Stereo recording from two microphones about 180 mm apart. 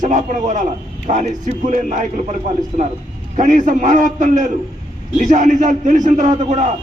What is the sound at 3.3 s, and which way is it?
A man's voice, 45° right (ahead or behind).